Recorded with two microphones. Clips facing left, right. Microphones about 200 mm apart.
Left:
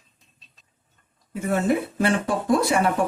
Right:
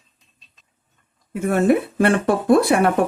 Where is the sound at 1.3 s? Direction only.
65° right (ahead or behind).